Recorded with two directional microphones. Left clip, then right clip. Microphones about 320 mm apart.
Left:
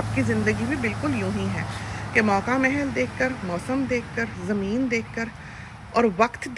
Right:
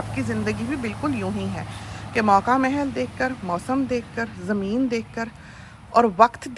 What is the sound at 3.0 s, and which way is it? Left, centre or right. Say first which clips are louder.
Speech: left 1 dB; centre.